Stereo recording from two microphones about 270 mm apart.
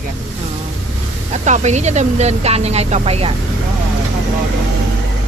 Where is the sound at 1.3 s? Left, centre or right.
Right.